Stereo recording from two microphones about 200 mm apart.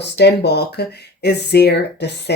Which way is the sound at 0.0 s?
55° left (ahead or behind).